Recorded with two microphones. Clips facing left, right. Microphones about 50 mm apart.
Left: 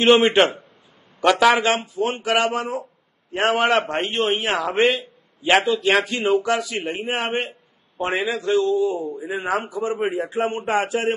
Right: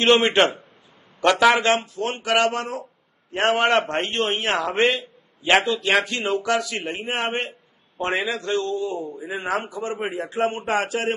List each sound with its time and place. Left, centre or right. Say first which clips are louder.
0.0 s a man's voice: left 2 dB; centre
6.3 s a man's voice: left 2 dB; centre
6.6 s a man's voice: left 2 dB; centre; by 9.2 s left
9.3 s a man's voice: left 2 dB; centre
9.7 s a man's voice: left 4 dB; left